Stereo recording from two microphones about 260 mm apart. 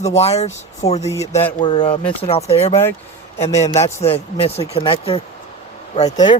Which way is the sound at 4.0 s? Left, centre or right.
Left.